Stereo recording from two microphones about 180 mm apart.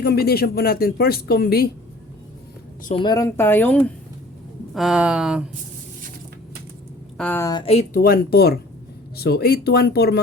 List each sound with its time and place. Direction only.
0.0 s speech: 60° left (ahead or behind)
2.9 s a woman's voice: 25° left (ahead or behind)
3.2 s speech: 10° left (ahead or behind)
4.7 s speech: 5° right (ahead or behind)
7.2 s speech: 10° left (ahead or behind)
7.5 s speech: 30° left (ahead or behind)
7.9 s speech: 55° left (ahead or behind)